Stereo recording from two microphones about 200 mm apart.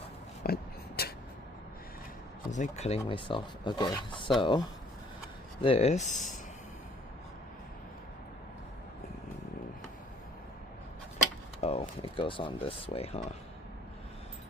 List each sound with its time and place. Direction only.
0.4 s a sound: 50° left (ahead or behind)
2.5 s speech: 35° left (ahead or behind)
5.6 s speech: 30° left (ahead or behind)
11.6 s speech: 30° left (ahead or behind)